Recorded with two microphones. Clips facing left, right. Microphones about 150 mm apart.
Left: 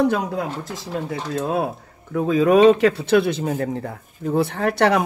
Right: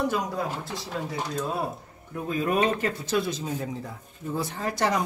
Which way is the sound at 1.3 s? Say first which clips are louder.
Left 8 dB; 60° left (ahead or behind).